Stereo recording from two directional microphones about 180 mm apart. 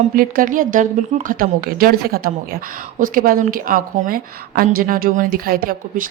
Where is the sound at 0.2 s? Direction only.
50° right (ahead or behind).